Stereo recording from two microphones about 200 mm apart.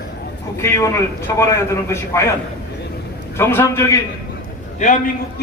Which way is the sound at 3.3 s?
15° left (ahead or behind).